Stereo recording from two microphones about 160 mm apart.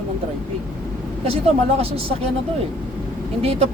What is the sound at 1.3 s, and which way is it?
Speech, 40° right (ahead or behind).